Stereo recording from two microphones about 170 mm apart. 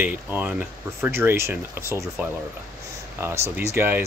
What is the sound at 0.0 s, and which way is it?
Speech, 10° right (ahead or behind).